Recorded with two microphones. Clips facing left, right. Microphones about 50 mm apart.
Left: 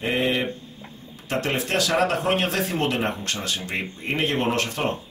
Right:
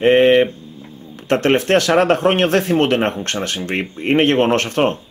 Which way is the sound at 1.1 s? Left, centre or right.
Right.